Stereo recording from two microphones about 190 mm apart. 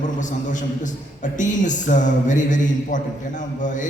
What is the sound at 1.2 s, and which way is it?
A man's voice, 40° left (ahead or behind).